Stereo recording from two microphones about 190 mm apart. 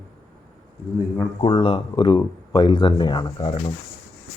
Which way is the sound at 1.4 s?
25° left (ahead or behind).